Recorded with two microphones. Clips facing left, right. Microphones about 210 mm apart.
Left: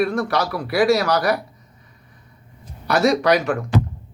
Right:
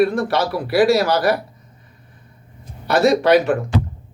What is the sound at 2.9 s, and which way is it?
Speech, centre (ahead or behind).